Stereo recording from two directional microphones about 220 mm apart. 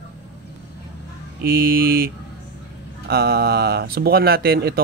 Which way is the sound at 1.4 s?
40° right (ahead or behind).